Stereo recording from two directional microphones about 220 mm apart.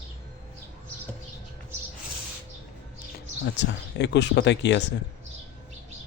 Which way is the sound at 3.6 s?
50° left (ahead or behind).